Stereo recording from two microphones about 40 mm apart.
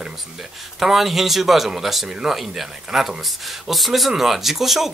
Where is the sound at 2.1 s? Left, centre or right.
Centre.